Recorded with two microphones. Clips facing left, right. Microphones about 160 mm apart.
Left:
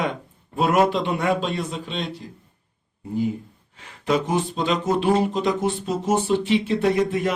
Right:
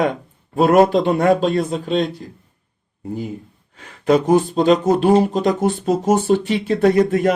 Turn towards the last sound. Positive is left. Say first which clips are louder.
# right 6 dB
turn(degrees=-45)  # may be behind; listen again after turning